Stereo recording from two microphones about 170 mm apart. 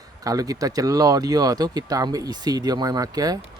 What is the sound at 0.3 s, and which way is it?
Speech, 20° right (ahead or behind).